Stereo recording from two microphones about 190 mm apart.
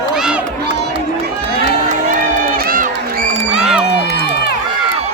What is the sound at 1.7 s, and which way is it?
Crowd, 40° right (ahead or behind).